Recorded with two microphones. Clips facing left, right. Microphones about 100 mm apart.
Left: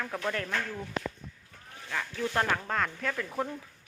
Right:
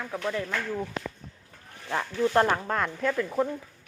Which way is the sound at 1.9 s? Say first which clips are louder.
Right 7 dB; 30° right (ahead or behind).